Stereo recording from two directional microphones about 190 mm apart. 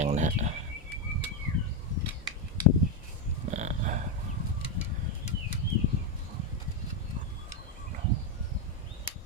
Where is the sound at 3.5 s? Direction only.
40° right (ahead or behind).